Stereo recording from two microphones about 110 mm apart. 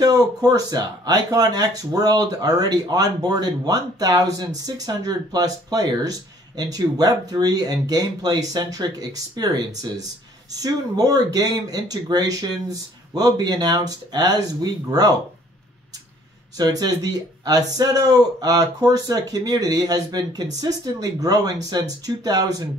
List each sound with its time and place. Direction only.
0.0 s speech: 35° right (ahead or behind)
10.5 s speech: 35° right (ahead or behind)
16.5 s speech: 35° right (ahead or behind)